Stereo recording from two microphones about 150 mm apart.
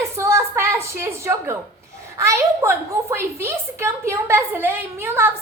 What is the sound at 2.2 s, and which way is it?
A woman's voice, 20° right (ahead or behind).